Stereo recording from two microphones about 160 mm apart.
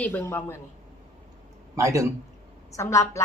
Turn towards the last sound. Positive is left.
turn(degrees=20)  # may be behind; listen again after turning